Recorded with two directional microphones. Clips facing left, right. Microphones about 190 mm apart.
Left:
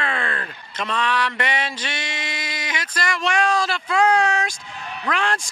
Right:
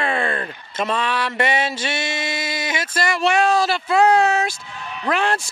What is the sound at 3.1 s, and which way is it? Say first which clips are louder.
Speech: right 4 dB; 5° right (ahead or behind).